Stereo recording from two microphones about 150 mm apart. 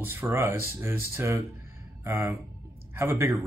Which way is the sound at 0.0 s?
15° right (ahead or behind).